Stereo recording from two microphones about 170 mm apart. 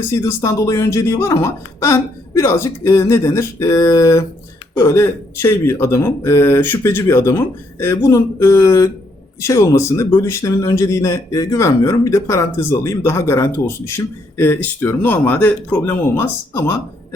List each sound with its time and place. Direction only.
0.0 s speech: 15° left (ahead or behind)